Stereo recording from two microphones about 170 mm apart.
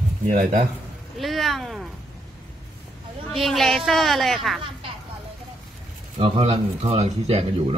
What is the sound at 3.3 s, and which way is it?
A woman's voice, centre (ahead or behind).